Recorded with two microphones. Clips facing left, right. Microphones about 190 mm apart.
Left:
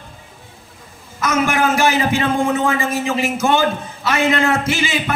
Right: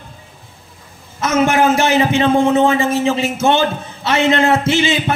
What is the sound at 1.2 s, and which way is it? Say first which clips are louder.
A man's voice: right 4 dB; 25° right (ahead or behind).